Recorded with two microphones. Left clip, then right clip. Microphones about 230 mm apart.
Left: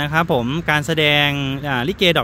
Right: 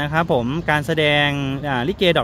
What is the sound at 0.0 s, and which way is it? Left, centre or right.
Speech, left.